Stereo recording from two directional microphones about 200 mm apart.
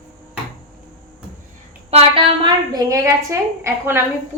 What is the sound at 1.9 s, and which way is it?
A woman's voice, 30° right (ahead or behind).